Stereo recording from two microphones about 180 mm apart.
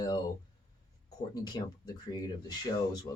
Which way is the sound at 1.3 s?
20° left (ahead or behind).